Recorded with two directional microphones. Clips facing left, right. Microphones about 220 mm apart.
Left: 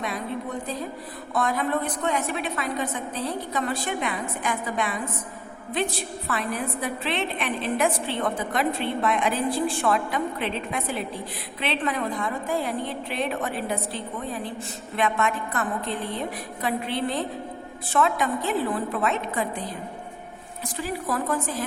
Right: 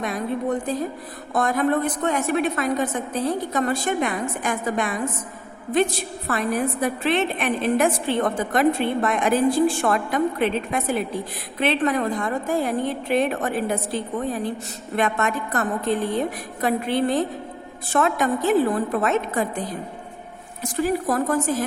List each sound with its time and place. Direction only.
0.0 s a sound: 50° right (ahead or behind)
1.3 s a woman's voice: 45° right (ahead or behind)
6.2 s a woman's voice: 45° right (ahead or behind)
20.7 s a woman's voice: 45° right (ahead or behind)